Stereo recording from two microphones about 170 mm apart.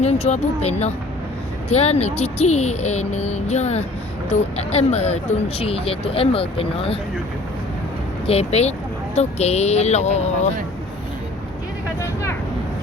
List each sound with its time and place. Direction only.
0.0 s speech: 40° left (ahead or behind)
8.3 s speech: 40° left (ahead or behind)